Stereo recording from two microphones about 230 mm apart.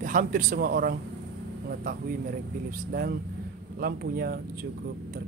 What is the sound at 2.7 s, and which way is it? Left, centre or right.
Speech, right.